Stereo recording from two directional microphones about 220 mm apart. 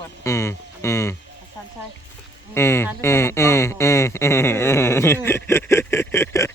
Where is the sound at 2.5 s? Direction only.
10° left (ahead or behind).